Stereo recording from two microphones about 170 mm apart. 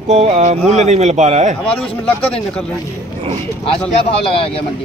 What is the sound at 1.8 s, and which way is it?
Speech, 35° left (ahead or behind).